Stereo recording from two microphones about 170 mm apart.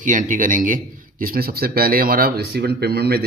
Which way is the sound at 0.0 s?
50° right (ahead or behind).